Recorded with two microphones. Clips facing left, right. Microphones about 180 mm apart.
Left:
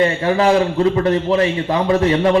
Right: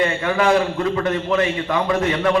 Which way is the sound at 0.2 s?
30° left (ahead or behind).